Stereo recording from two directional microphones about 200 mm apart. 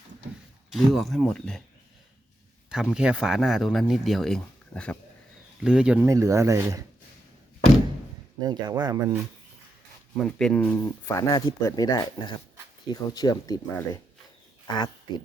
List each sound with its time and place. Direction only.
0.7 s speech: centre (ahead or behind)
2.6 s speech: 5° right (ahead or behind)
8.4 s speech: 20° right (ahead or behind)
10.2 s speech: 5° left (ahead or behind); by 13.6 s 20° left (ahead or behind)
14.7 s speech: 20° left (ahead or behind)